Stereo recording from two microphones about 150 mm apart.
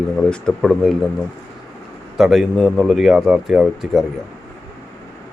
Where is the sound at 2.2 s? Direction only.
Centre (ahead or behind).